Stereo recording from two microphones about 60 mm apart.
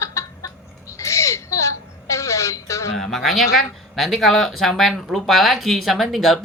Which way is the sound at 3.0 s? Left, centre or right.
Centre.